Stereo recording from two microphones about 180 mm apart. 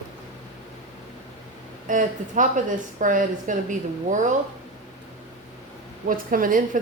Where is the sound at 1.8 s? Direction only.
45° right (ahead or behind).